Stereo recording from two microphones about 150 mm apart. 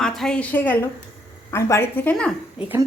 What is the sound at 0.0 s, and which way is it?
A woman's voice, 5° left (ahead or behind).